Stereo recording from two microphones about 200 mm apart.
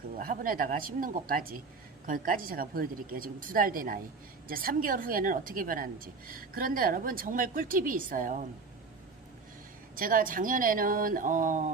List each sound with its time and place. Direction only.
0.2 s a woman's voice: 45° right (ahead or behind)
9.9 s a woman's voice: 45° right (ahead or behind)